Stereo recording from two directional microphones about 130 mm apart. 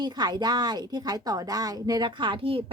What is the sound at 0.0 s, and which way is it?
A woman's voice, 35° right (ahead or behind).